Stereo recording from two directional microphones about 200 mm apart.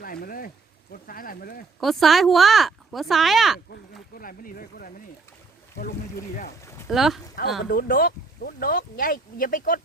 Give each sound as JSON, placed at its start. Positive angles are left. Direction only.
{"t": 0.0, "sound": "a sound", "side_deg": 45}
{"t": 1.8, "sound": "speech", "side_deg": 0}
{"t": 4.2, "sound": "speech", "side_deg": 45}
{"t": 6.8, "sound": "speech", "side_deg": 0}
{"t": 7.7, "sound": "speech", "side_deg": 45}